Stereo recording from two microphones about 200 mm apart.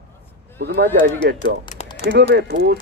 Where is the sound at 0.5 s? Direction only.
55° right (ahead or behind).